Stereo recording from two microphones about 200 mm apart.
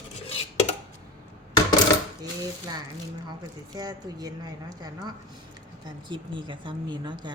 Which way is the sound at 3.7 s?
20° right (ahead or behind).